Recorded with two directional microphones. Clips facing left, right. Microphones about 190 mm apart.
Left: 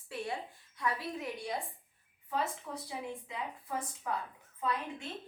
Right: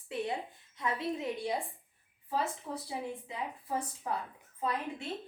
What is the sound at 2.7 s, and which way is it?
A woman's voice, 25° right (ahead or behind).